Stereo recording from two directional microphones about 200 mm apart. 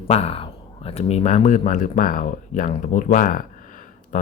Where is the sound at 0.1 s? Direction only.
30° left (ahead or behind).